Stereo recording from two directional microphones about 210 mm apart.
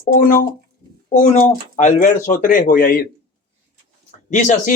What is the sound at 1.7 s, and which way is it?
Speech, 35° left (ahead or behind).